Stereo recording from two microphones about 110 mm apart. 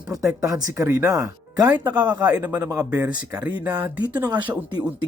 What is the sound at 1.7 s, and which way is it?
Speech, 15° right (ahead or behind).